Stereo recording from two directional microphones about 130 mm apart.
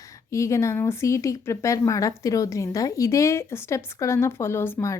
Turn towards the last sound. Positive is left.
turn(degrees=20)  # may be behind; listen again after turning